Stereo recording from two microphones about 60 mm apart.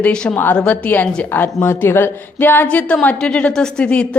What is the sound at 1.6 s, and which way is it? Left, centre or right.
A woman's voice, left.